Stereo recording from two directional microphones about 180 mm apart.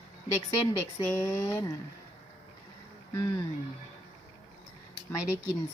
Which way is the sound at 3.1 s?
20° left (ahead or behind).